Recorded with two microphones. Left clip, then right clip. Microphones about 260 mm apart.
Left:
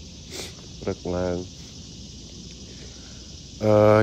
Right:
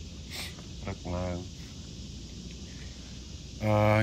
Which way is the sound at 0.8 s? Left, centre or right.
Left.